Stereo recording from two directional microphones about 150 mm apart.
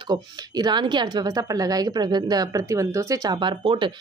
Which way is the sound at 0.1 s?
30° right (ahead or behind).